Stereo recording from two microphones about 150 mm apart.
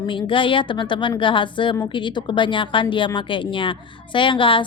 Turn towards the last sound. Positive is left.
turn(degrees=35)  # may be behind; listen again after turning